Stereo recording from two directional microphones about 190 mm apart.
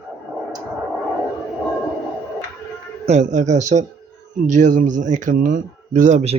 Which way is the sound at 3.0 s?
40° right (ahead or behind).